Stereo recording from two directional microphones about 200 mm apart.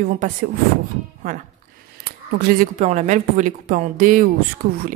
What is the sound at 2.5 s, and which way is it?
Speech, 35° right (ahead or behind).